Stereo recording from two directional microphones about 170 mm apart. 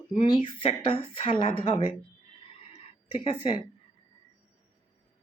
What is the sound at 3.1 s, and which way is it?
Speech, 30° left (ahead or behind).